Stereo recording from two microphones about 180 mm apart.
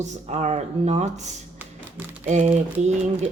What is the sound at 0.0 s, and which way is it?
Speech, 40° right (ahead or behind).